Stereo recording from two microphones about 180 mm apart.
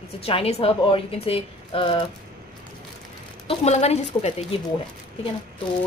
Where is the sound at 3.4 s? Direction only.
35° left (ahead or behind).